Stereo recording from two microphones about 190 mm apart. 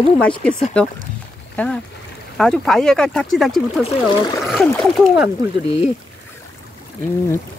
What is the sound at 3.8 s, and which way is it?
Speech, 25° left (ahead or behind).